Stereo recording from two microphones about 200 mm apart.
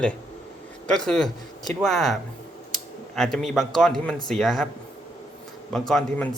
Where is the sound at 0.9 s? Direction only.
5° left (ahead or behind).